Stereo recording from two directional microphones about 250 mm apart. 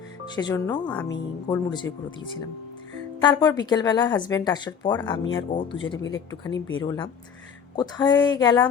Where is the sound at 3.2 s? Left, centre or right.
Centre.